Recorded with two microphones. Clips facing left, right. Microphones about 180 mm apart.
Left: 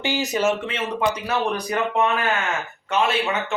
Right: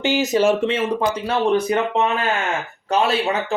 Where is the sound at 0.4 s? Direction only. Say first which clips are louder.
Right 5 dB; 30° right (ahead or behind).